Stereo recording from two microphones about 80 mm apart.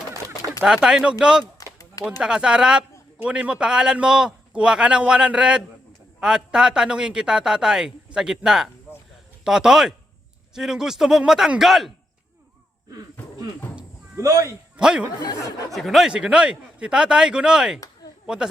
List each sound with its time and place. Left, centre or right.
0.6 s a man's voice: centre
14.2 s speech: right
14.8 s speech: centre
15.7 s a man's voice: centre